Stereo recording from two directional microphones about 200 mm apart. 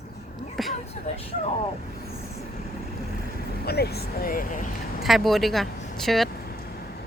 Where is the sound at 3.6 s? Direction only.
55° left (ahead or behind).